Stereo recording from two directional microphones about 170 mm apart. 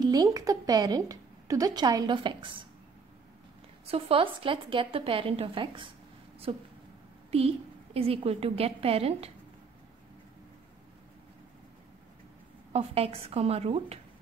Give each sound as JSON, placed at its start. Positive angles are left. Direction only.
{"t": 0.0, "sound": "a woman's voice", "side_deg": -20}
{"t": 3.8, "sound": "a woman's voice", "side_deg": -35}
{"t": 7.2, "sound": "a woman's voice", "side_deg": -35}
{"t": 12.7, "sound": "a woman's voice", "side_deg": -35}